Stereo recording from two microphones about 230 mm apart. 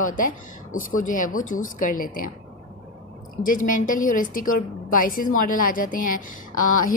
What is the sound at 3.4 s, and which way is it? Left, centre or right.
A woman's voice, left.